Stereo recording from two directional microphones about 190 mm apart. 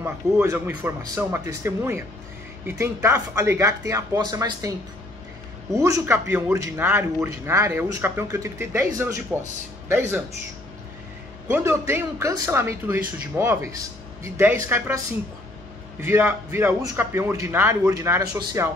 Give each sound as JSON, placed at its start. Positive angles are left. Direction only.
{"t": 0.0, "sound": "a man's voice", "side_deg": -15}
{"t": 11.5, "sound": "a man's voice", "side_deg": -15}
{"t": 16.0, "sound": "a man's voice", "side_deg": -15}